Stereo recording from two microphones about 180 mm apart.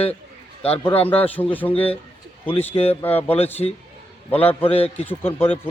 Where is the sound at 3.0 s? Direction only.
10° left (ahead or behind).